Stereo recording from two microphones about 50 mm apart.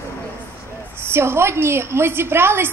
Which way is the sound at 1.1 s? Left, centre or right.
Right.